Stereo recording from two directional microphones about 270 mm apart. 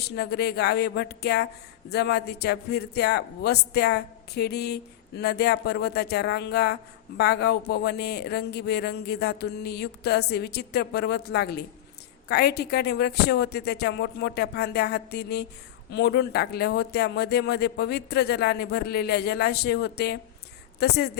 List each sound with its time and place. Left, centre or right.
0.2 s speech: left